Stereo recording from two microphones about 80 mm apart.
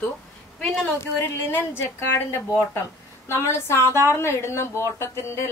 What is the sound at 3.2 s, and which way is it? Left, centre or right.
A woman's voice, left.